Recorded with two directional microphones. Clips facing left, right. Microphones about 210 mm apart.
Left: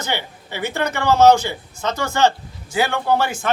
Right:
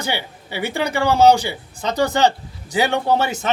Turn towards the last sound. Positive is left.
turn(degrees=-20)  # may be behind; listen again after turning